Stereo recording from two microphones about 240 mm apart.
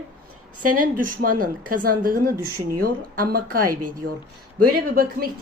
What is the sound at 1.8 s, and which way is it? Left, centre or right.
A woman's voice, right.